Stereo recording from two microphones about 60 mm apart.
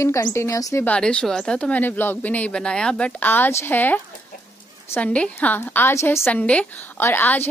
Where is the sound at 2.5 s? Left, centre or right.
Centre.